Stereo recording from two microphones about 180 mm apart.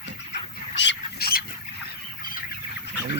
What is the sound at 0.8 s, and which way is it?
Squawk, 70° left (ahead or behind).